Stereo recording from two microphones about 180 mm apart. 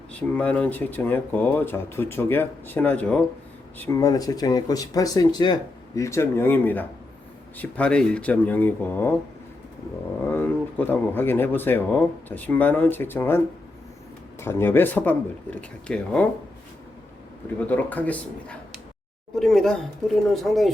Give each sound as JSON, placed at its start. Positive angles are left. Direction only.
{"t": 0.1, "sound": "speech", "side_deg": 5}
{"t": 10.2, "sound": "speech", "side_deg": 10}
{"t": 17.7, "sound": "speech", "side_deg": 10}